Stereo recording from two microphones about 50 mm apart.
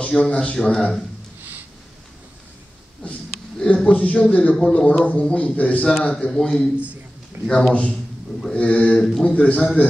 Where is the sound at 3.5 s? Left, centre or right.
Left.